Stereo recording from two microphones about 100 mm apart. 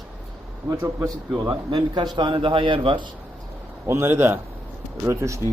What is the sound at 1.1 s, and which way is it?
A man's voice, 45° right (ahead or behind).